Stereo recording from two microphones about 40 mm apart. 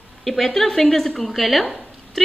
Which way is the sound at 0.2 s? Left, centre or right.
Centre.